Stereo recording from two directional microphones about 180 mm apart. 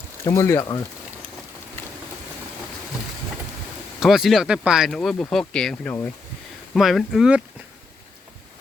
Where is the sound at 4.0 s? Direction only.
Centre (ahead or behind).